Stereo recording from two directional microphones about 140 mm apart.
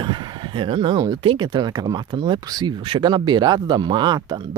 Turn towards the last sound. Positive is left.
turn(degrees=-30)  # may be behind; listen again after turning